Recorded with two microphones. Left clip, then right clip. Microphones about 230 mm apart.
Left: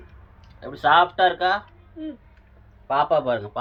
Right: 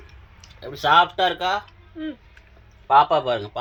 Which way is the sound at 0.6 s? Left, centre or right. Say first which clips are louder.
Even; right.